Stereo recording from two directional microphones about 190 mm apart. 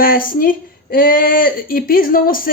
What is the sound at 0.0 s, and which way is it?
Speech, 50° left (ahead or behind).